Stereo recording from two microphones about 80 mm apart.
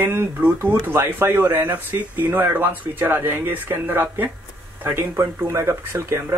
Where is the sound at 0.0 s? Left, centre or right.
Right.